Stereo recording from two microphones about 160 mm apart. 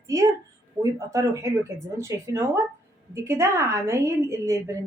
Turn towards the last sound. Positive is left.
turn(degrees=-20)  # may be behind; listen again after turning